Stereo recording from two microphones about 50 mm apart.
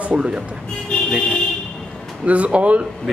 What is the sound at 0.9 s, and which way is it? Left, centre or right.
Vehicle, centre.